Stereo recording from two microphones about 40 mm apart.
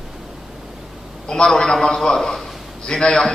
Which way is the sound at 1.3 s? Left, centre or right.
Centre.